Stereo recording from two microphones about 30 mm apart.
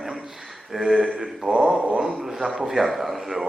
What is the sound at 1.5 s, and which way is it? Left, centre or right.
Speech, right.